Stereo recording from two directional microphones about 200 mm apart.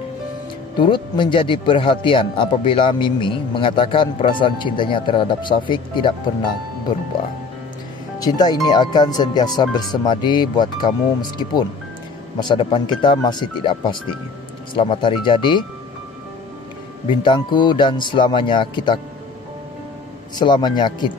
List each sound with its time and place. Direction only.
0.7 s speech: 25° left (ahead or behind)
8.2 s speech: 20° left (ahead or behind)
17.2 s speech: 25° left (ahead or behind)
20.3 s speech: 20° left (ahead or behind)